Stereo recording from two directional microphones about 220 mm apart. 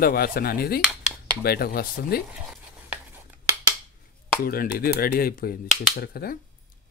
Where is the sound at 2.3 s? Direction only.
5° right (ahead or behind).